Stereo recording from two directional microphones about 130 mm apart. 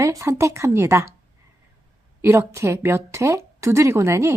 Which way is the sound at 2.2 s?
20° right (ahead or behind).